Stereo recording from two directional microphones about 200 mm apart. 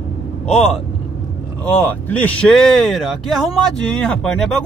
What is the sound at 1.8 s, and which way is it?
Speech, 10° left (ahead or behind).